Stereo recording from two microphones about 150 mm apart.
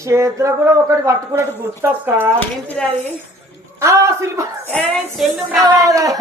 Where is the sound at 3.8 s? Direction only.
20° right (ahead or behind).